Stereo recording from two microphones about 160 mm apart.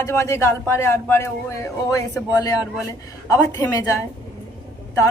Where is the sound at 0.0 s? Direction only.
15° left (ahead or behind).